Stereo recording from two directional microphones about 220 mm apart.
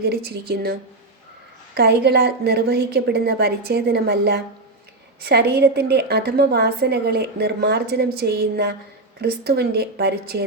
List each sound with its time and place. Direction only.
0.0 s a woman's voice: 45° right (ahead or behind)